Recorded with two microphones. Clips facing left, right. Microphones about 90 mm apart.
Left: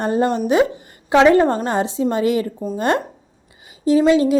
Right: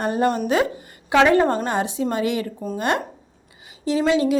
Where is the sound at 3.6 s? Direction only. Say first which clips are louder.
Left 7 dB; 30° left (ahead or behind).